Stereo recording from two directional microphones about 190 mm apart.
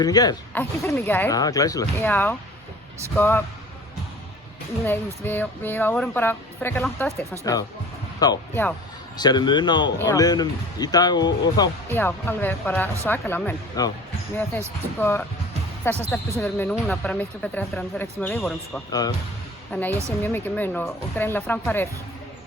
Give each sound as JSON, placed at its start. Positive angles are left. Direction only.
{"t": 0.0, "sound": "speech", "side_deg": 20}
{"t": 4.9, "sound": "speech", "side_deg": 10}
{"t": 8.2, "sound": "speech", "side_deg": 20}
{"t": 14.9, "sound": "speech", "side_deg": 10}
{"t": 18.9, "sound": "speech", "side_deg": 20}
{"t": 19.7, "sound": "speech", "side_deg": 10}